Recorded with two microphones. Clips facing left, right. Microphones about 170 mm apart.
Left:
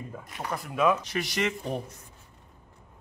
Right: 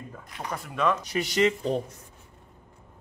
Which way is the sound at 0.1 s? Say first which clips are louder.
Left 1 dB; 5° left (ahead or behind).